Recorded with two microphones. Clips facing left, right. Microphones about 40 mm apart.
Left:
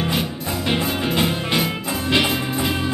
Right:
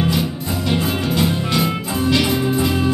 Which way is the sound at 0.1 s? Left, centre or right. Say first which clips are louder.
Right 2 dB; left.